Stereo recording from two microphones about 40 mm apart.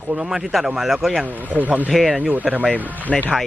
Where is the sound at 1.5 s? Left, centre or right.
Right.